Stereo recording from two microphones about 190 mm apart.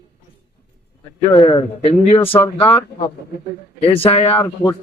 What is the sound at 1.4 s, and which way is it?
Speech, 30° left (ahead or behind).